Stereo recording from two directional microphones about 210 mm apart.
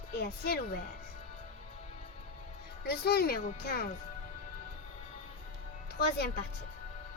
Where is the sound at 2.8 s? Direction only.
50° left (ahead or behind).